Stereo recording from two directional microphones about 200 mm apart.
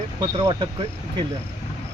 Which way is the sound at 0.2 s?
20° right (ahead or behind).